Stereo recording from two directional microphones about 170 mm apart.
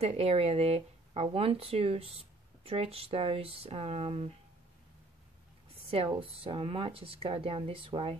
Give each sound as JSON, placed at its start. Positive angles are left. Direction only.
{"t": 0.0, "sound": "speech", "side_deg": -40}
{"t": 6.1, "sound": "speech", "side_deg": -30}